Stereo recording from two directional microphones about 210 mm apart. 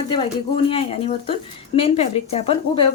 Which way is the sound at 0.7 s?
25° left (ahead or behind).